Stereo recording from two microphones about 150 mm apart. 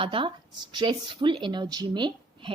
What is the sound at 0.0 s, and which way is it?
Speech, 35° right (ahead or behind).